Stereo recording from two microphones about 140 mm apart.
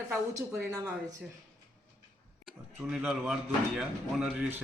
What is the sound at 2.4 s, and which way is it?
Speech, centre (ahead or behind).